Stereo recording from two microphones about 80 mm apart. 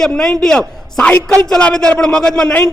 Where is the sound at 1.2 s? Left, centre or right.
Right.